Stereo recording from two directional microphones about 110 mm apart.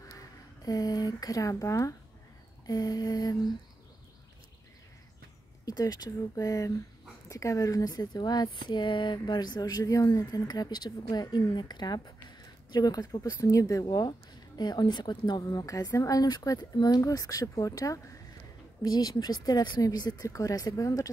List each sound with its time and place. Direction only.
0.7 s speech: 35° left (ahead or behind)
5.7 s speech: 35° left (ahead or behind)
13.8 s speech: 40° left (ahead or behind)